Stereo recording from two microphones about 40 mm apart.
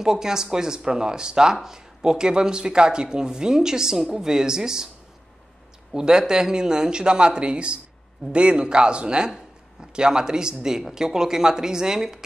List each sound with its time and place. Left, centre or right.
0.0 s speech: centre
5.9 s speech: centre